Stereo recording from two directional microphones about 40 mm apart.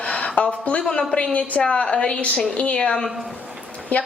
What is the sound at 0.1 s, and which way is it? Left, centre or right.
A woman's voice, left.